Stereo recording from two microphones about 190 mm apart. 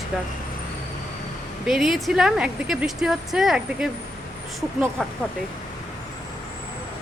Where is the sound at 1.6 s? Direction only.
Centre (ahead or behind).